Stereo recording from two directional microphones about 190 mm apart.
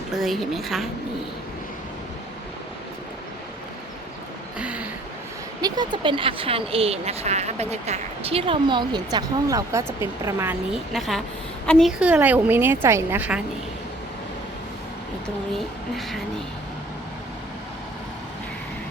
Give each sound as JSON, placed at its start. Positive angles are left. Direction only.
{"t": 0.1, "sound": "a woman's voice", "side_deg": 0}
{"t": 4.5, "sound": "a sound", "side_deg": -5}
{"t": 5.6, "sound": "a woman's voice", "side_deg": -20}
{"t": 15.5, "sound": "a woman's voice", "side_deg": 0}